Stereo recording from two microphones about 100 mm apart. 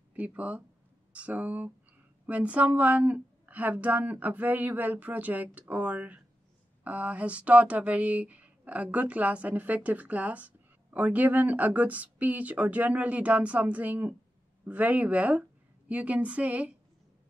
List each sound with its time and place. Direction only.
0.1 s speech: 15° right (ahead or behind)